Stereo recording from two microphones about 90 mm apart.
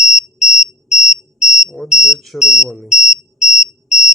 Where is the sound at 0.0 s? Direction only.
5° right (ahead or behind).